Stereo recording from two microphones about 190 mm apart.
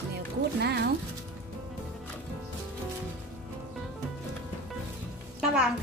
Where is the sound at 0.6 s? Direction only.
60° right (ahead or behind).